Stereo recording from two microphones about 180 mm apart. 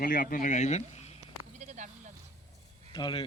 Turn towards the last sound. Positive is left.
turn(degrees=25)  # may be behind; listen again after turning